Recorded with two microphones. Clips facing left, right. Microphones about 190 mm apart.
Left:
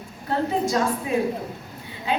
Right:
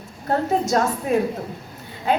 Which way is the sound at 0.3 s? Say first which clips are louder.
Right 3 dB; 45° right (ahead or behind).